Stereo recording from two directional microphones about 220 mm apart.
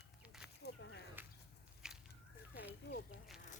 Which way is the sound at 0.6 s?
50° left (ahead or behind).